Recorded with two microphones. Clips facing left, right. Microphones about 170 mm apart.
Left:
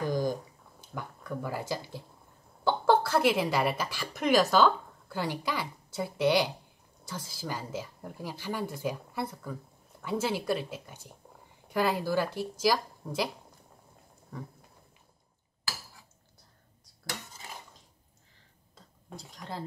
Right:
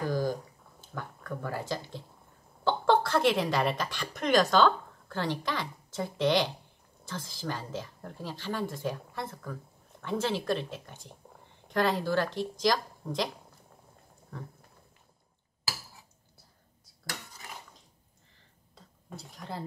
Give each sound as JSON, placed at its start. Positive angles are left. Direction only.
{"t": 0.0, "sound": "a sound", "side_deg": 15}
{"t": 2.6, "sound": "a woman's voice", "side_deg": 5}
{"t": 17.0, "sound": "dishes", "side_deg": 25}
{"t": 19.1, "sound": "speech", "side_deg": 0}